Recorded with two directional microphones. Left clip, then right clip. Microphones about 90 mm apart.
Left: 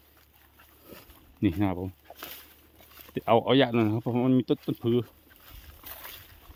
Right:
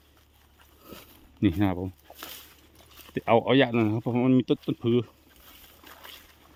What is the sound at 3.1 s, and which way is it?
Speech, 25° right (ahead or behind).